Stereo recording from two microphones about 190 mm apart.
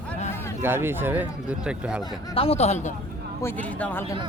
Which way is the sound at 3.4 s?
10° left (ahead or behind).